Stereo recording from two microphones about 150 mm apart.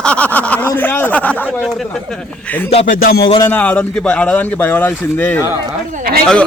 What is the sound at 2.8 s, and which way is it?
Speech, 80° left.